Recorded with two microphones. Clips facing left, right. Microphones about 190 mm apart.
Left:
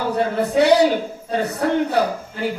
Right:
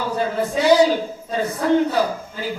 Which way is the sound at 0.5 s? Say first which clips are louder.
Left 1 dB; 65° left (ahead or behind).